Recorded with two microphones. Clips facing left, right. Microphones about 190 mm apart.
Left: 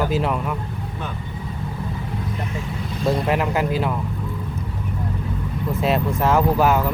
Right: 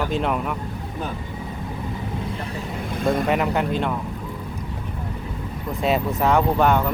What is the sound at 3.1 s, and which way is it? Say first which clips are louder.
Speech: even; centre (ahead or behind).